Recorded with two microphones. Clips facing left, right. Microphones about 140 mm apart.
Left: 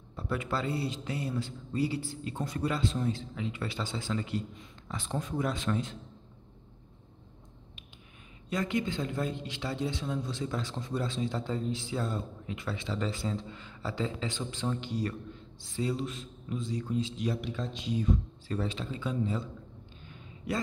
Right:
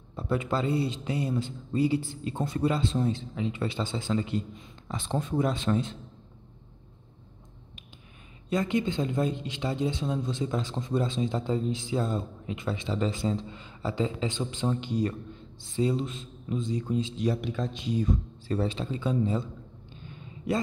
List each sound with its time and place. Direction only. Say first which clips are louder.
0.1 s speech: right 4 dB; 25° right (ahead or behind)
8.5 s speech: right 4 dB; 25° right (ahead or behind)
17.2 s a man's voice: right 4 dB; 45° right (ahead or behind)
18.5 s speech: right 5 dB; 30° right (ahead or behind)
20.5 s speech: right 5 dB; 25° right (ahead or behind)